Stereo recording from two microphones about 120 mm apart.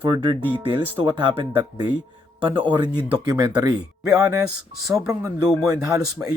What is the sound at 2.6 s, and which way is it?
Speech, 45° right (ahead or behind).